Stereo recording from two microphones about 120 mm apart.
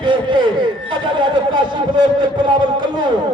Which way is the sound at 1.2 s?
40° right (ahead or behind).